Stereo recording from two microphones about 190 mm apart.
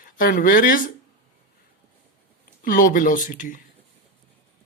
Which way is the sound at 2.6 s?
45° left (ahead or behind).